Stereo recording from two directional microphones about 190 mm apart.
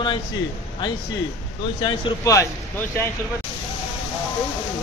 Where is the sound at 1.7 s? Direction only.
25° left (ahead or behind).